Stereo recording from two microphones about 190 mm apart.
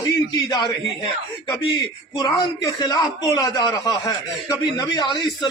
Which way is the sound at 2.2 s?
20° left (ahead or behind).